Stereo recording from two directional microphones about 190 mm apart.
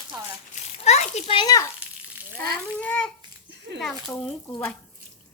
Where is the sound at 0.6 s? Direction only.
35° left (ahead or behind); by 1.7 s 20° left (ahead or behind).